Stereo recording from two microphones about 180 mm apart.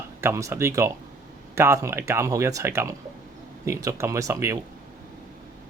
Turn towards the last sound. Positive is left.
turn(degrees=-15)  # may be behind; listen again after turning